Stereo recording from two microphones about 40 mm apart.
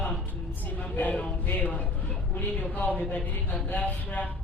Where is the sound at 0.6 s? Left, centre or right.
Left.